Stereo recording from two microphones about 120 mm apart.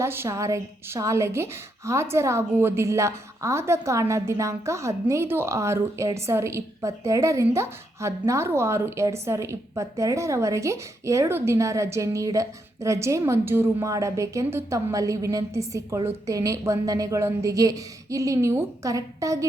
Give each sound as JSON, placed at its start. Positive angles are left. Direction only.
{"t": 0.0, "sound": "a woman's voice", "side_deg": -20}